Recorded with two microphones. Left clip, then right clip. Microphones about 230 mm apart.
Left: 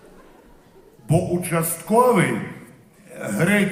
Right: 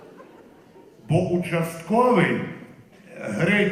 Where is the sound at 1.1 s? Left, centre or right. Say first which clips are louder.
Left 1 dB; left.